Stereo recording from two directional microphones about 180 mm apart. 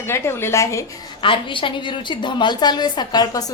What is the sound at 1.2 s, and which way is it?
A woman's voice, 30° left (ahead or behind).